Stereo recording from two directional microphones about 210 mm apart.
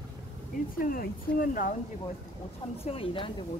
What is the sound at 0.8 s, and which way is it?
Speech, 40° left (ahead or behind).